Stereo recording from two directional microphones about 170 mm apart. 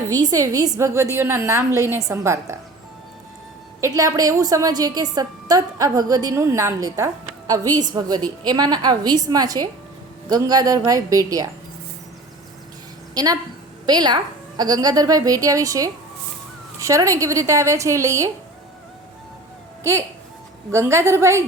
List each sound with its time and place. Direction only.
0.1 s a woman's voice: 20° right (ahead or behind)
3.8 s a woman's voice: 20° right (ahead or behind)
13.1 s a woman's voice: 20° right (ahead or behind)
19.8 s a woman's voice: 15° right (ahead or behind)